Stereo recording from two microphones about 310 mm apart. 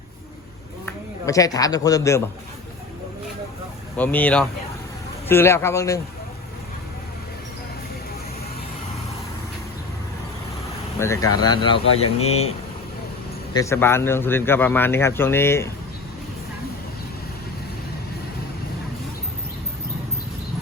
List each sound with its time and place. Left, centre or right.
0.9 s speech: centre
3.9 s speech: centre
11.0 s speech: centre